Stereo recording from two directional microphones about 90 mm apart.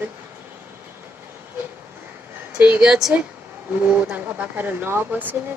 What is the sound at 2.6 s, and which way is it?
Speech, 15° right (ahead or behind).